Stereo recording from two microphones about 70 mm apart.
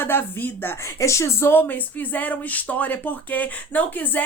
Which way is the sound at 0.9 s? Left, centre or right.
Left.